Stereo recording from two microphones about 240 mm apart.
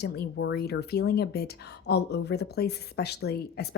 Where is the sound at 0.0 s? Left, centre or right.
Left.